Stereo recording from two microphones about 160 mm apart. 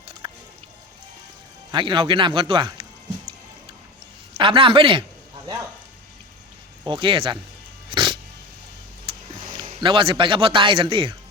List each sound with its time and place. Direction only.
0.2 s music: 35° right (ahead or behind)
1.7 s speech: 30° right (ahead or behind)
4.4 s speech: 35° right (ahead or behind)
6.8 s speech: 30° right (ahead or behind)
7.9 s cat: 30° right (ahead or behind)
9.1 s a sound: 35° right (ahead or behind)
9.8 s speech: 30° right (ahead or behind)